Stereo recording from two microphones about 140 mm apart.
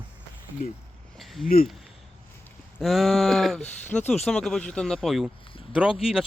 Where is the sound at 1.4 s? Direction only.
90° left.